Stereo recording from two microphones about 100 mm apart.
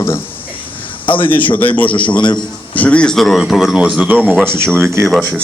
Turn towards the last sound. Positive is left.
turn(degrees=-25)  # may be behind; listen again after turning